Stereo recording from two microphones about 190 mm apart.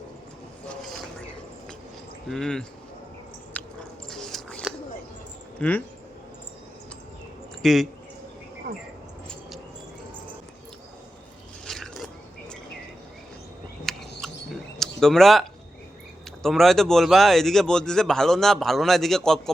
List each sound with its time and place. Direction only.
2.2 s speech: 5° left (ahead or behind)
3.6 s chewing: 10° left (ahead or behind)
4.1 s dog: centre (ahead or behind)
5.5 s speech: 10° left (ahead or behind)
7.6 s speech: centre (ahead or behind)
8.7 s speech: 65° right (ahead or behind)
11.6 s a sound: centre (ahead or behind)
13.8 s a sound: centre (ahead or behind)
16.4 s speech: centre (ahead or behind)